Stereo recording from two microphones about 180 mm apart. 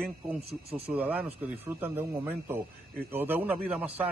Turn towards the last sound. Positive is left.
turn(degrees=-10)  # may be behind; listen again after turning